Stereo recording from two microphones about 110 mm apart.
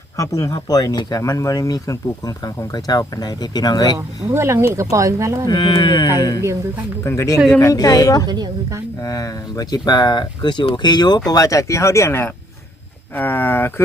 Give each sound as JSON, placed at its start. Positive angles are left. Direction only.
{"t": 0.2, "sound": "speech", "side_deg": 30}
{"t": 4.3, "sound": "speech", "side_deg": -25}
{"t": 5.5, "sound": "speech", "side_deg": 50}
{"t": 7.0, "sound": "speech", "side_deg": 25}
{"t": 8.3, "sound": "a woman's voice", "side_deg": -40}
{"t": 9.0, "sound": "speech", "side_deg": 30}